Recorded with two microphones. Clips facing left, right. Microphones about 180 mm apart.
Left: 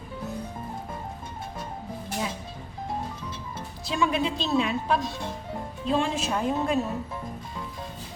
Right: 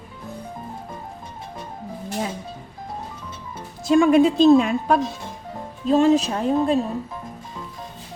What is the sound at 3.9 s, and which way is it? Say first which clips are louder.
A woman's voice: right 11 dB; 50° right (ahead or behind).